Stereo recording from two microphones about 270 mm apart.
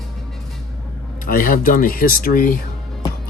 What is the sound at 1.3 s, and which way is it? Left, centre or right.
Speech, left.